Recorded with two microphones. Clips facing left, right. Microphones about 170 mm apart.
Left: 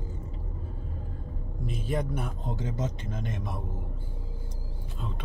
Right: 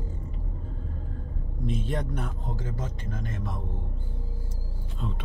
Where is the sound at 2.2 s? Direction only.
20° left (ahead or behind).